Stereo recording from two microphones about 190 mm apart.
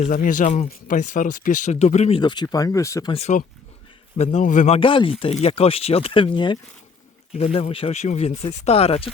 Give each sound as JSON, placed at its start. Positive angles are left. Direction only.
{"t": 0.0, "sound": "speech", "side_deg": 45}
{"t": 3.1, "sound": "speech", "side_deg": 35}